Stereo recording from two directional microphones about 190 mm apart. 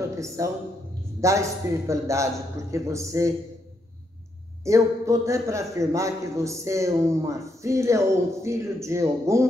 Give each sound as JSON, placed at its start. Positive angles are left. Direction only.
{"t": 0.4, "sound": "a man's voice", "side_deg": -15}
{"t": 4.6, "sound": "a man's voice", "side_deg": -15}